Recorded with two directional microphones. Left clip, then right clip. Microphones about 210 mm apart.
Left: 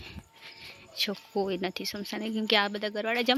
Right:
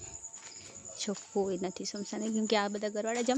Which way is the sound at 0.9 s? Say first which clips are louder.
Left 7 dB; 5° right (ahead or behind).